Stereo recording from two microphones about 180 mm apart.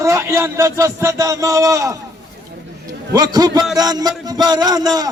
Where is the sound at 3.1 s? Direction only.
20° right (ahead or behind).